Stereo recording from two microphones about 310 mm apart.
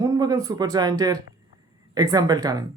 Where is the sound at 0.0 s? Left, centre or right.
Centre.